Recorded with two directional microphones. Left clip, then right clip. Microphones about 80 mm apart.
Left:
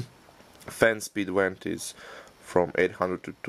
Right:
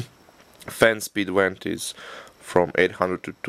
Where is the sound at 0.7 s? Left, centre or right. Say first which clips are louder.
Right 4 dB; right.